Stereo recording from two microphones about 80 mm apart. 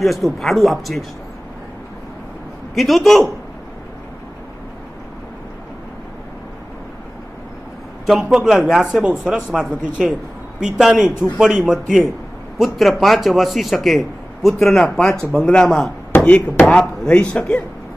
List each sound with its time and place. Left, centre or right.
0.0 s a man's voice: centre
2.7 s a man's voice: centre
8.1 s a man's voice: centre